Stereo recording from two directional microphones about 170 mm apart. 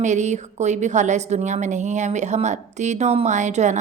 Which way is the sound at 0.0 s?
45° right (ahead or behind).